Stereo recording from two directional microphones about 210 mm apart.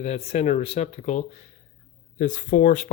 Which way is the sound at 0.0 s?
30° left (ahead or behind).